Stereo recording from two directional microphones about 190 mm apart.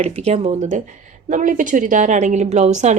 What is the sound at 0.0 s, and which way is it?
A woman's voice, 35° right (ahead or behind).